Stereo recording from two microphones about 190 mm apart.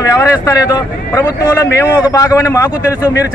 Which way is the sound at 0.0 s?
20° left (ahead or behind).